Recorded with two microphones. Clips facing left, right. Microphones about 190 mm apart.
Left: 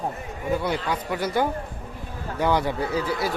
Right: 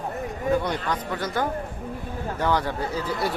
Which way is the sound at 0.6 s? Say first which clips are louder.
Left 1 dB; 10° left (ahead or behind).